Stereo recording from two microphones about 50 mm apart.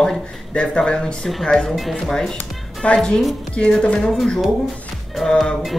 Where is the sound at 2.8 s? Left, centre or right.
Left.